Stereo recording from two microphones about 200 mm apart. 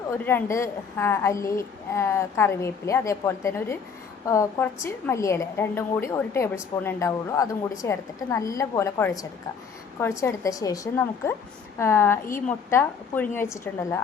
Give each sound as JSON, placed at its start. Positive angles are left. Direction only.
{"t": 0.3, "sound": "a woman's voice", "side_deg": 10}